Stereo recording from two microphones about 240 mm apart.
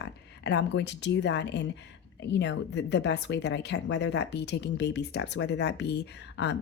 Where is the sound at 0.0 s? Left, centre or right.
Left.